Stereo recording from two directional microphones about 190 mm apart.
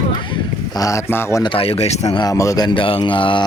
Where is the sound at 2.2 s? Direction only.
15° left (ahead or behind).